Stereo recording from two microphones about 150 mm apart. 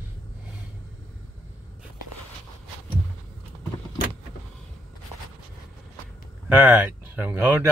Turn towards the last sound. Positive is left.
turn(degrees=-15)  # may be behind; listen again after turning